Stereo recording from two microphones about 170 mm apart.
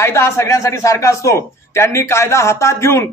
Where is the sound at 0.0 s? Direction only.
15° left (ahead or behind).